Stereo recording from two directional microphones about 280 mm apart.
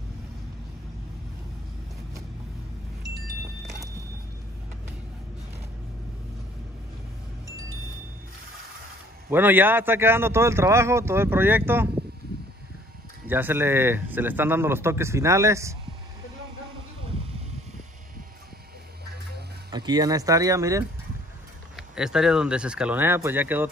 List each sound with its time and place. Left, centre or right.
9.3 s a man's voice: centre
13.3 s a man's voice: centre
19.7 s a man's voice: centre